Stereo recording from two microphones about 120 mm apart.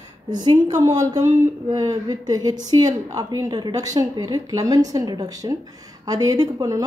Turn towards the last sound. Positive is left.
turn(degrees=-30)  # may be behind; listen again after turning